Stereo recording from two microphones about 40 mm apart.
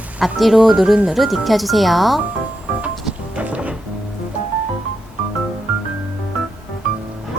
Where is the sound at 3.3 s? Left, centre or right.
Right.